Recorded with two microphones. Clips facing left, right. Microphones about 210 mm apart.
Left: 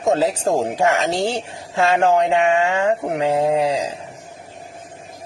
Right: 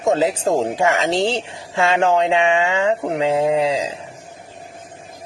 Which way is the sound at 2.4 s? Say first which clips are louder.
Even; 90° right.